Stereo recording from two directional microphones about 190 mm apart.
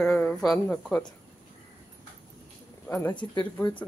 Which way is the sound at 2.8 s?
10° left (ahead or behind).